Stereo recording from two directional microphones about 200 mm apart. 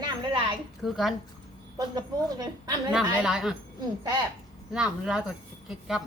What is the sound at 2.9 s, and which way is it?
Speech, 5° right (ahead or behind).